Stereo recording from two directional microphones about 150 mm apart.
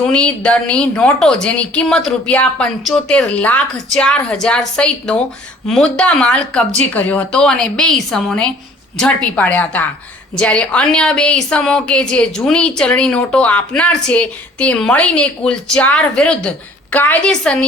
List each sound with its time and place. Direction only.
0.1 s a woman's voice: 5° left (ahead or behind)